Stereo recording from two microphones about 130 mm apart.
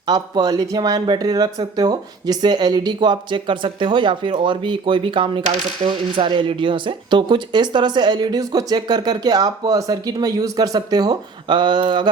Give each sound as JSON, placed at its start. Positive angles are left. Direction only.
{"t": 0.1, "sound": "speech", "side_deg": -30}